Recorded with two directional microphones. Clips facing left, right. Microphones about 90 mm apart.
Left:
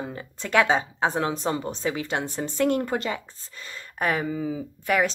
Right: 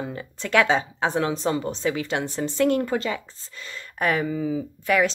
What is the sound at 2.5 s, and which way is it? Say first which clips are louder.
Speech: right 2 dB; 40° left (ahead or behind).